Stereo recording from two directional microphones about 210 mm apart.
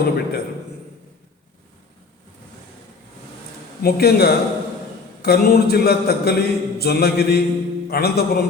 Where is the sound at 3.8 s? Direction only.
50° left (ahead or behind).